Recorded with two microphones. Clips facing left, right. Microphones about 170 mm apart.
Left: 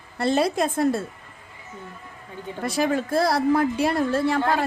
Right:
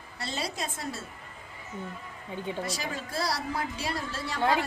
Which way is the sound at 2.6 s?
55° left (ahead or behind).